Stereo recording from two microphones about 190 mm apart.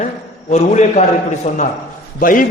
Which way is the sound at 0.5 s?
35° left (ahead or behind).